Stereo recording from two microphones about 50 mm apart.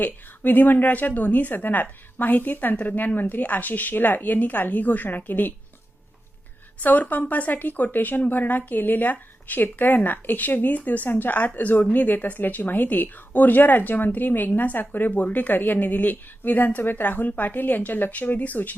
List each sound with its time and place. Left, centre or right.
0.0 s speech: left
6.8 s speech: left